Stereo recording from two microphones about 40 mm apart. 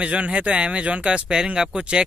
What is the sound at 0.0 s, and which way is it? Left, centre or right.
Speech, right.